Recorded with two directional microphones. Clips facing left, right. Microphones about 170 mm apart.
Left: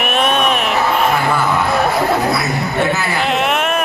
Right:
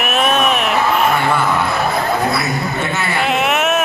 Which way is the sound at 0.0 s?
Centre (ahead or behind).